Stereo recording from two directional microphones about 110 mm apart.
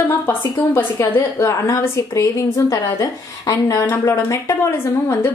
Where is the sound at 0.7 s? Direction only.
25° left (ahead or behind).